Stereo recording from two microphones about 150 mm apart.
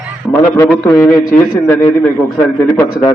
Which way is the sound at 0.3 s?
20° left (ahead or behind).